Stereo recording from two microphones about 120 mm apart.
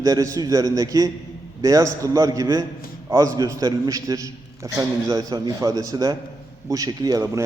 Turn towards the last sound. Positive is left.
turn(degrees=-30)  # may be behind; listen again after turning